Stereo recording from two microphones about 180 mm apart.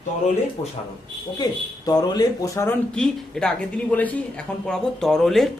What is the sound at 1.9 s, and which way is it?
Speech, 20° left (ahead or behind).